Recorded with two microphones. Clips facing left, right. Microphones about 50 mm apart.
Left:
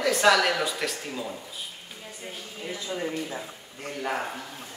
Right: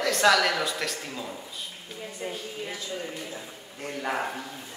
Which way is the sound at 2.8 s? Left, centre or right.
Left.